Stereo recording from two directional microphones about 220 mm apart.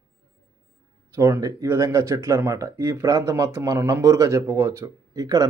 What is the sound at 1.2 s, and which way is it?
Speech, 10° right (ahead or behind).